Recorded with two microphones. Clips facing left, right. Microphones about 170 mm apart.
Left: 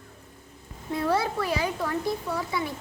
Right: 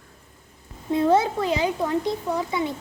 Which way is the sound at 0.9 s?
20° right (ahead or behind).